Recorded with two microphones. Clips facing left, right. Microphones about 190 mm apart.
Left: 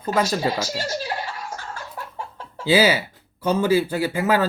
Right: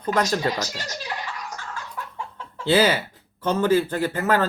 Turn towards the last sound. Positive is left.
turn(degrees=10)  # may be behind; listen again after turning